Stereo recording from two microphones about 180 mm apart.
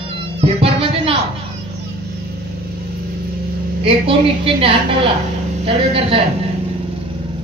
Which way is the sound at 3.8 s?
30° right (ahead or behind).